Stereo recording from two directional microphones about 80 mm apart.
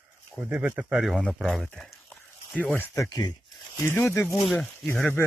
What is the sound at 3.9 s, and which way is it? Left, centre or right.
Speech, left.